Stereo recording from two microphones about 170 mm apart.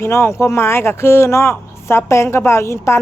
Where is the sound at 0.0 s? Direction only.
15° left (ahead or behind).